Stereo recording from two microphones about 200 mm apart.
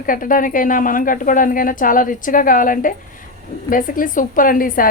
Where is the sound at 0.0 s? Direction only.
45° left (ahead or behind).